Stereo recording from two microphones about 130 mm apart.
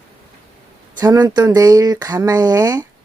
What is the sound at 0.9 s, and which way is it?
Speech, 30° right (ahead or behind).